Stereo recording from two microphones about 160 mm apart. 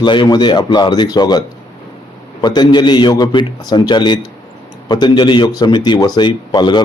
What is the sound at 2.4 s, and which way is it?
Speech, 25° left (ahead or behind).